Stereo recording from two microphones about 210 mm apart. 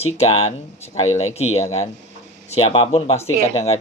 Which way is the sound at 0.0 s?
30° left (ahead or behind).